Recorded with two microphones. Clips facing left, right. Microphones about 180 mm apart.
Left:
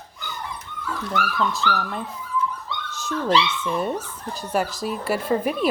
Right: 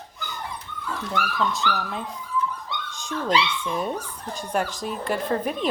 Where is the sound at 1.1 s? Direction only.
Centre (ahead or behind).